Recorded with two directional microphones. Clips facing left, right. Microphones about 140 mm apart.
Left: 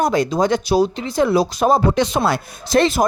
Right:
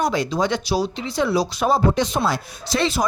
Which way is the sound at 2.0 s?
70° left (ahead or behind).